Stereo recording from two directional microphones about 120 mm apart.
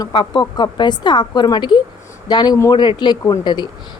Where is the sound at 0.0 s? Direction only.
40° left (ahead or behind).